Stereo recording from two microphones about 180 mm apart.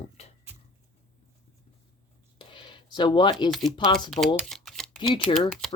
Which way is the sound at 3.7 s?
25° left (ahead or behind).